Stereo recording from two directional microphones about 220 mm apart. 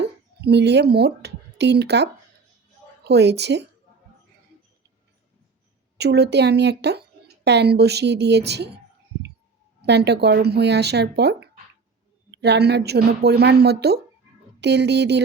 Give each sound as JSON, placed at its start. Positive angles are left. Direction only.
{"t": 0.0, "sound": "a woman's voice", "side_deg": -50}
{"t": 6.0, "sound": "a woman's voice", "side_deg": -50}
{"t": 9.8, "sound": "a woman's voice", "side_deg": -50}